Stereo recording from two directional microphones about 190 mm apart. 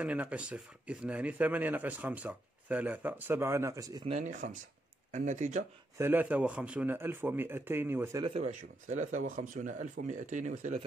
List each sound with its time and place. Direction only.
0.0 s speech: 5° right (ahead or behind)
4.1 s speech: 40° right (ahead or behind)
5.9 s speech: 10° right (ahead or behind)
8.2 s speech: 35° right (ahead or behind)